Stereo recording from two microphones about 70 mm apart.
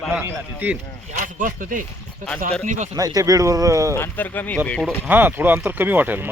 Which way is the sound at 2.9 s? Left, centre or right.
Right.